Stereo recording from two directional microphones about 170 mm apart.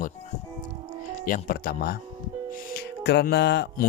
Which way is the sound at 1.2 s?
55° left (ahead or behind).